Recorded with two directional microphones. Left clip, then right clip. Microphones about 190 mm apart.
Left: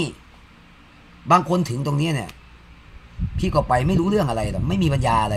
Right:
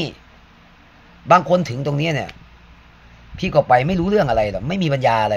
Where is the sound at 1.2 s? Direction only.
15° left (ahead or behind).